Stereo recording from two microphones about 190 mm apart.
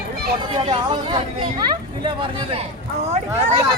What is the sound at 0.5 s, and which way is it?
Speech, 30° right (ahead or behind).